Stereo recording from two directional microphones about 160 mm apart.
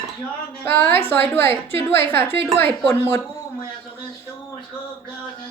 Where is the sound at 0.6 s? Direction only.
15° left (ahead or behind).